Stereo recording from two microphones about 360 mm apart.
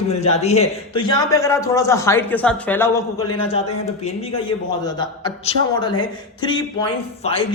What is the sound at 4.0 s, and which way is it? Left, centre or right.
Speech, centre.